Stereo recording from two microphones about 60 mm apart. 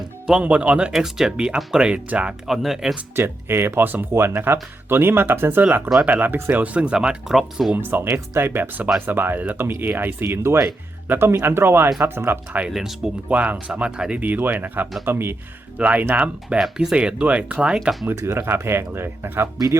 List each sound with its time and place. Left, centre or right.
0.4 s speech: right
0.9 s speech: centre
2.5 s speech: centre
3.2 s speech: right; by 7.3 s centre
7.3 s speech: centre
7.8 s speech: right
12.7 s speech: centre
13.2 s speech: right
14.2 s speech: right
15.8 s speech: right
16.6 s speech: centre
18.2 s speech: right